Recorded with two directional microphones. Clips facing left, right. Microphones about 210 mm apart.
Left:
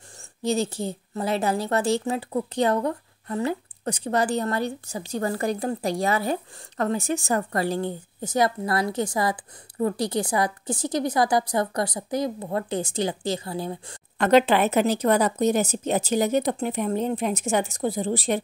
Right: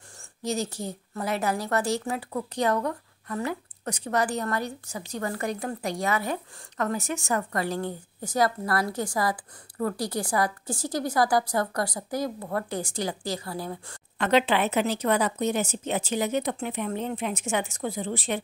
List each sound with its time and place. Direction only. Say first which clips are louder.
0.4 s a woman's voice: left 5 dB; 30° left (ahead or behind)
14.1 s speech: left 5 dB; 45° left (ahead or behind)